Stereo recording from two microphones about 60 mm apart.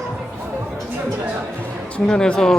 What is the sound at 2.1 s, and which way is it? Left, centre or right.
Speech, centre.